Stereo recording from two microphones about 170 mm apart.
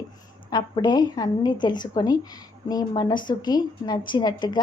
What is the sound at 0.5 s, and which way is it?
A woman's voice, 25° left (ahead or behind).